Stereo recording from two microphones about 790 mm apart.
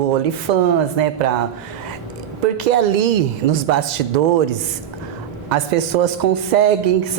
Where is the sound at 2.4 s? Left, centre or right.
Right.